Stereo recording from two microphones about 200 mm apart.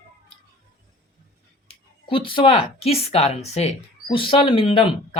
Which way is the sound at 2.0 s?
25° left (ahead or behind).